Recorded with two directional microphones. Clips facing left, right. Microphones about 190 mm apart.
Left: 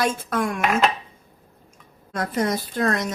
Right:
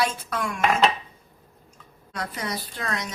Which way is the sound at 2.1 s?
45° left (ahead or behind).